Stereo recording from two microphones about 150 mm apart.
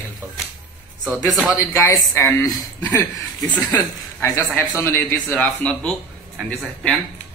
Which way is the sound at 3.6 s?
15° left (ahead or behind).